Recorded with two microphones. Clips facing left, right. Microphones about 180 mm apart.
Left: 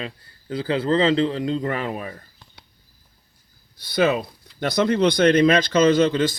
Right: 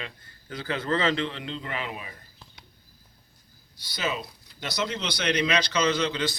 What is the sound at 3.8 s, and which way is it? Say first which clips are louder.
Speech: left 11 dB; 55° left (ahead or behind).